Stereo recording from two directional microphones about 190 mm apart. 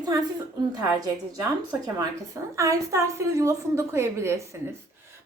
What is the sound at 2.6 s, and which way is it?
A woman's voice, 15° right (ahead or behind).